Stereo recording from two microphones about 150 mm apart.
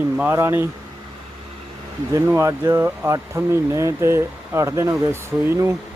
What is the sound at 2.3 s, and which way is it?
Speech, 20° right (ahead or behind).